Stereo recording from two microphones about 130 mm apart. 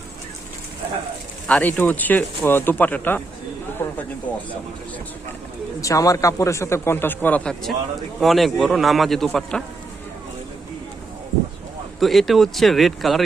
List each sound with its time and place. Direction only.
1.5 s speech: 10° left (ahead or behind)
3.8 s a sound: 15° left (ahead or behind)
4.3 s speech: 15° left (ahead or behind)
5.8 s a man's voice: 25° left (ahead or behind); by 9.6 s 5° left (ahead or behind)
11.9 s a man's voice: centre (ahead or behind)